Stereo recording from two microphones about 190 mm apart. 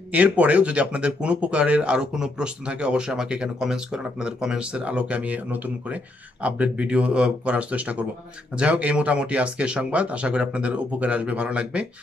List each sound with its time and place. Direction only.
0.1 s speech: 5° right (ahead or behind)